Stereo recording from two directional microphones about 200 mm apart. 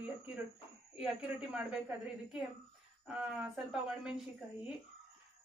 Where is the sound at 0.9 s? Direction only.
5° right (ahead or behind).